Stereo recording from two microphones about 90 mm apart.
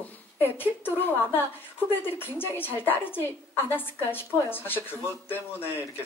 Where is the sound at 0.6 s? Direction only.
25° left (ahead or behind).